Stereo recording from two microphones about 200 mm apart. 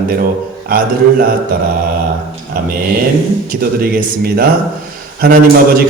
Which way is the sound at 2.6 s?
50° right (ahead or behind).